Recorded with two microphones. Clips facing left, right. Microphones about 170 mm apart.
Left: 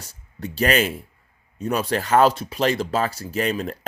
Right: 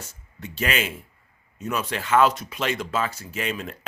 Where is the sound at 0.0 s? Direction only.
35° left (ahead or behind).